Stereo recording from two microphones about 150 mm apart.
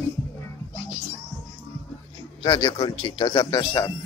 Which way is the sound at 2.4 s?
30° left (ahead or behind).